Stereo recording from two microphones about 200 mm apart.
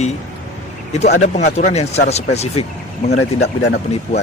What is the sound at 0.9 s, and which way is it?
Speech, 35° left (ahead or behind).